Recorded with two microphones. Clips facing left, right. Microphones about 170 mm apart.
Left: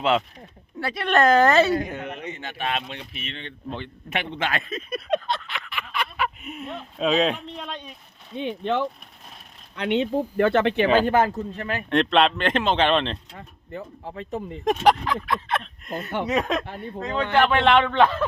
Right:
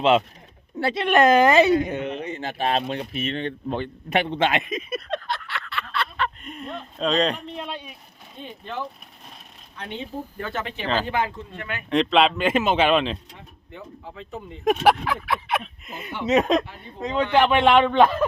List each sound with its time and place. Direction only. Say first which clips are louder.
0.0 s speech: right 3 dB; 20° right (ahead or behind)
1.0 s speech: right 1 dB; 15° right (ahead or behind); by 4.2 s 45° right (ahead or behind)
4.2 s speech: right 5 dB; 30° right (ahead or behind)
5.0 s a sound: left 4 dB; 20° left (ahead or behind); by 7.9 s 5° right (ahead or behind)
8.4 s speech: left 8 dB; 80° left
11.0 s speech: left 6 dB; 45° left (ahead or behind)
11.9 s speech: right 1 dB; centre (ahead or behind)
13.7 s speech: left 4 dB; 35° left (ahead or behind)
14.6 s speech: right 1 dB; 5° right (ahead or behind)
16.2 s speech: right 7 dB; 20° right (ahead or behind)